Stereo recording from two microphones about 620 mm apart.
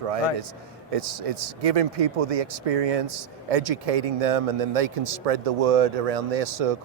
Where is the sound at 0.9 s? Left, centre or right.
Right.